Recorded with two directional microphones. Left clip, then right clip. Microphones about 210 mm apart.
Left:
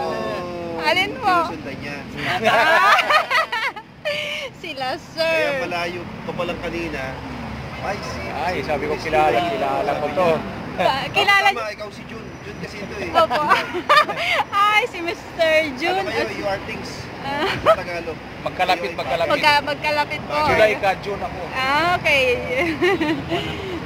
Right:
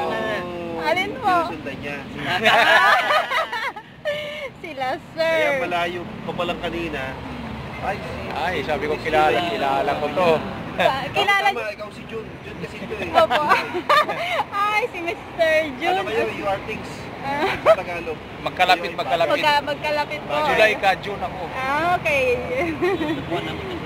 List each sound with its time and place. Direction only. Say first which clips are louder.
0.0 s a sound: even; 10° left (ahead or behind)
0.7 s speech: left 3 dB; 15° left (ahead or behind)
2.6 s a sound: left 2 dB; 20° left (ahead or behind); by 5.9 s 5° left (ahead or behind)
6.4 s speech: even; centre (ahead or behind)
8.4 s speech: even; 45° left (ahead or behind)
9.4 s speech: even; 25° left (ahead or behind)
13.1 s speech: even; 15° left (ahead or behind)
17.3 s speech: even; 10° left (ahead or behind)
18.4 s speech: right 2 dB; 35° left (ahead or behind)
19.2 s speech: left 3 dB; 15° left (ahead or behind)
20.5 s speech: even; 45° left (ahead or behind)
21.5 s speech: left 2 dB; 20° left (ahead or behind)